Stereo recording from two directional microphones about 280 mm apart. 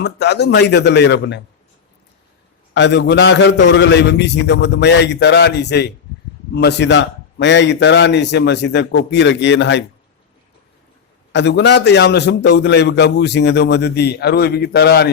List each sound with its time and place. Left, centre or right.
0.0 s a man's voice: left
2.7 s a man's voice: left
11.3 s a man's voice: left